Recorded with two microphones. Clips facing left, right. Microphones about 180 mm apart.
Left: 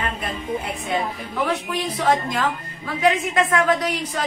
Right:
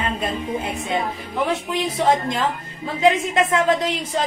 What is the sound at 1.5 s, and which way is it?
Music, 25° right (ahead or behind).